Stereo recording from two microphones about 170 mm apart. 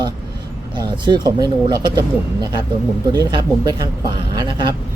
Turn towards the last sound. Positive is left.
turn(degrees=-25)  # may be behind; listen again after turning